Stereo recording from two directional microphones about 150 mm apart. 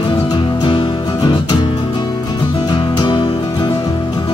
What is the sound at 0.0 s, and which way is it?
Music, 30° left (ahead or behind).